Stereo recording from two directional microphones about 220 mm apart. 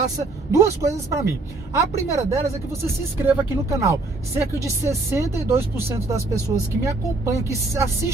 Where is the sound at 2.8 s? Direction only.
10° right (ahead or behind).